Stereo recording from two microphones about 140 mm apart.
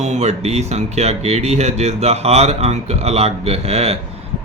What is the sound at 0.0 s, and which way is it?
Speech, 55° right (ahead or behind).